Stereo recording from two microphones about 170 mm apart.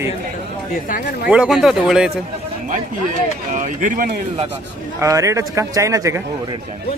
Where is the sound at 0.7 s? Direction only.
55° left (ahead or behind).